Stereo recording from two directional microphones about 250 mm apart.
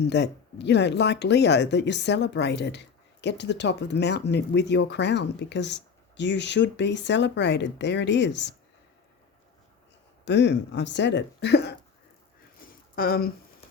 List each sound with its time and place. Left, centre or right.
0.0 s speech: left
10.2 s speech: left
13.0 s speech: left